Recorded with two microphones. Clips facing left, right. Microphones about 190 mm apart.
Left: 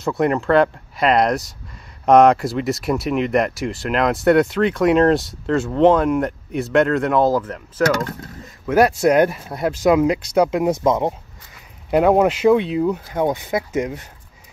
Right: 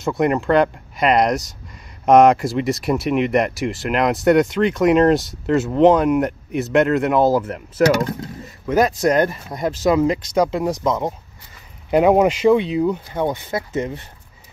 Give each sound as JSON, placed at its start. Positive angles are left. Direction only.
{"t": 0.0, "sound": "speech", "side_deg": 0}
{"t": 8.6, "sound": "speech", "side_deg": 10}
{"t": 10.7, "sound": "speech", "side_deg": 25}
{"t": 11.9, "sound": "speech", "side_deg": 0}